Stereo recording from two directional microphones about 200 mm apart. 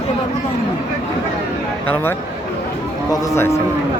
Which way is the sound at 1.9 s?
10° left (ahead or behind).